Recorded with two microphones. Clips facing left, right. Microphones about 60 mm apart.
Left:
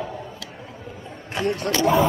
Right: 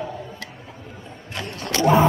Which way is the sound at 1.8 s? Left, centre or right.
Centre.